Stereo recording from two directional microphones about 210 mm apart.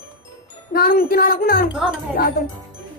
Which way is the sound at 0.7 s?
45° left (ahead or behind).